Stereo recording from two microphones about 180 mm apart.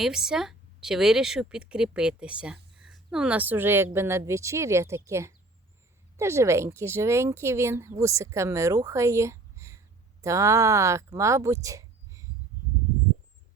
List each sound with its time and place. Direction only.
0.0 s speech: 5° right (ahead or behind)